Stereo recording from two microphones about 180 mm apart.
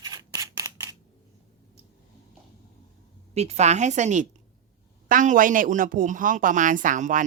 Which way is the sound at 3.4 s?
35° right (ahead or behind).